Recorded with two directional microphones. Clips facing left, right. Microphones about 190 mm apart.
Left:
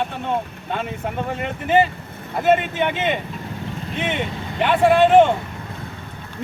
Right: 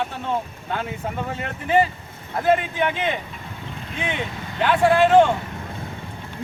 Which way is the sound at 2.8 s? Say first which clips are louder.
Left 2 dB; 20° left (ahead or behind).